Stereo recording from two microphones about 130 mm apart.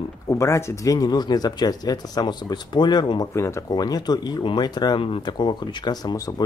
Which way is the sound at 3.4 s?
20° left (ahead or behind).